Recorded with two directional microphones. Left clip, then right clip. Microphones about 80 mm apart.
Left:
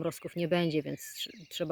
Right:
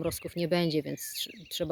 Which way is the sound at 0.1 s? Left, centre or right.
Centre.